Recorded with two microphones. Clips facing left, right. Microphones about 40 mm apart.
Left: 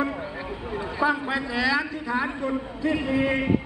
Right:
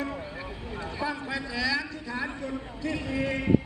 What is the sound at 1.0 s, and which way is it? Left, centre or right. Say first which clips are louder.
A man's voice: left 8 dB; left.